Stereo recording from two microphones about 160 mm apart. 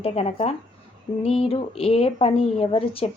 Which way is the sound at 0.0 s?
40° left (ahead or behind).